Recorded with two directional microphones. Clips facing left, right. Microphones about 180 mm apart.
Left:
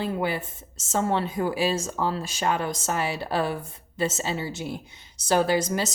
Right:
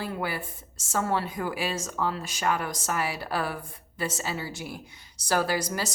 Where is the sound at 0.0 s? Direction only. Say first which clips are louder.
Left 5 dB; 25° left (ahead or behind).